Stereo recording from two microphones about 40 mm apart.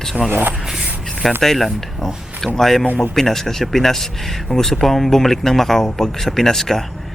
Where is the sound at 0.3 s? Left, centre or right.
Right.